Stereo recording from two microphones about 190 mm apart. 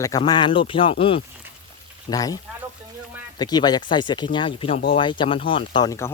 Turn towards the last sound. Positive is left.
turn(degrees=20)  # may be behind; listen again after turning